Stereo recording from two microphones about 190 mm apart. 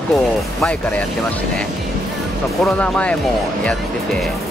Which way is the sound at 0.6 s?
5° left (ahead or behind).